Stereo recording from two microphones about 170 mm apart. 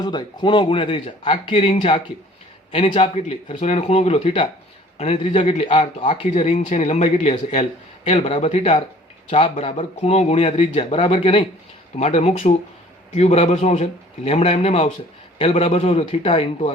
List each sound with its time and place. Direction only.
0.0 s a man's voice: 25° left (ahead or behind)